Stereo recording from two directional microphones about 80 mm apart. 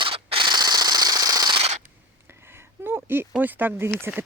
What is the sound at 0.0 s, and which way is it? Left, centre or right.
Rub, right.